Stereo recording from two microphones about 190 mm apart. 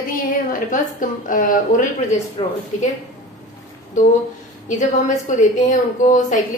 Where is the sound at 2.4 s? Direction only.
25° left (ahead or behind).